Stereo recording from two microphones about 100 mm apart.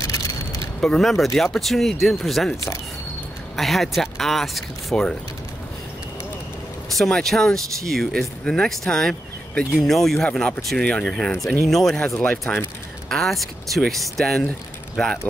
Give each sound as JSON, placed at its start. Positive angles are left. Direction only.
{"t": 0.0, "sound": "a sound", "side_deg": 35}
{"t": 0.7, "sound": "speech", "side_deg": 5}
{"t": 3.5, "sound": "speech", "side_deg": 0}
{"t": 6.9, "sound": "speech", "side_deg": 5}